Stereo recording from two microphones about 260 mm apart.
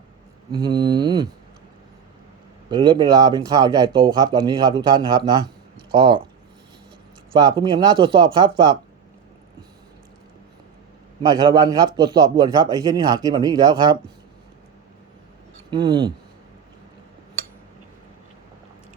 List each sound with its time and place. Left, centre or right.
0.5 s a man's voice: centre
2.6 s a man's voice: centre
7.3 s a man's voice: centre
11.2 s a man's voice: centre
15.7 s a man's voice: centre